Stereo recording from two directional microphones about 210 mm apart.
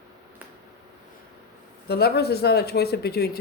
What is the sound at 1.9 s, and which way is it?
Speech, 50° left (ahead or behind).